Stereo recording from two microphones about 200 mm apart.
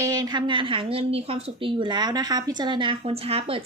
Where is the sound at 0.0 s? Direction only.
20° right (ahead or behind).